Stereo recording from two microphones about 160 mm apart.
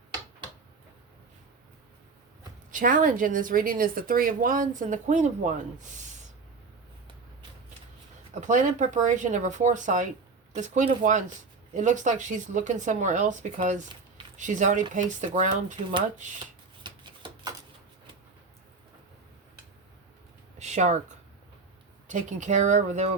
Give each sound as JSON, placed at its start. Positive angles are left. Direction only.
{"t": 2.7, "sound": "speech", "side_deg": -60}
{"t": 8.4, "sound": "speech", "side_deg": -50}
{"t": 16.8, "sound": "shuffling cards", "side_deg": -30}
{"t": 20.6, "sound": "a sound", "side_deg": -45}
{"t": 22.0, "sound": "speech", "side_deg": -50}